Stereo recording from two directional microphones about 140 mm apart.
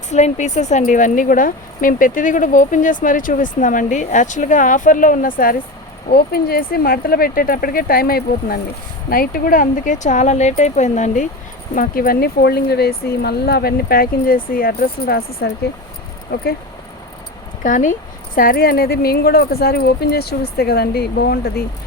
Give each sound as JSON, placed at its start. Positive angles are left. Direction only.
{"t": 0.1, "sound": "speech", "side_deg": 55}
{"t": 11.7, "sound": "speech", "side_deg": 80}
{"t": 13.6, "sound": "speech", "side_deg": 90}
{"t": 17.6, "sound": "speech", "side_deg": 65}
{"t": 18.3, "sound": "speech", "side_deg": 90}